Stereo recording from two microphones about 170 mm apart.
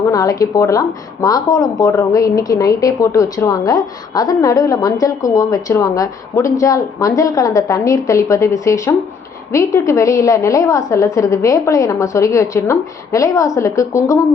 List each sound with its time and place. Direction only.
0.0 s a woman's voice: 20° left (ahead or behind)